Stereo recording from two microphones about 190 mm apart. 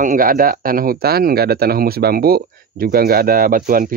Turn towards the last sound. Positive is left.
turn(degrees=-45)  # may be behind; listen again after turning